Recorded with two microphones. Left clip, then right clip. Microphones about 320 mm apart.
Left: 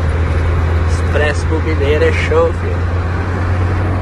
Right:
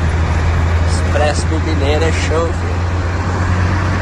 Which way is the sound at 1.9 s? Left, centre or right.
Centre.